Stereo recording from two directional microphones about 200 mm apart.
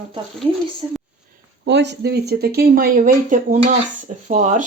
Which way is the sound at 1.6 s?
60° right (ahead or behind).